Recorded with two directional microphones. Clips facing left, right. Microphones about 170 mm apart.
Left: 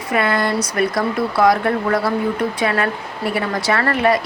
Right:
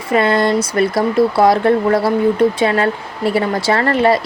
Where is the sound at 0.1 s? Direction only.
25° right (ahead or behind).